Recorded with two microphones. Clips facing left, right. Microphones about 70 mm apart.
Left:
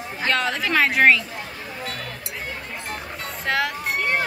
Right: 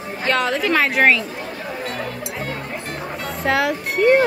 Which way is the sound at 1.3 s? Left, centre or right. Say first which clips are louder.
Right 5 dB; right.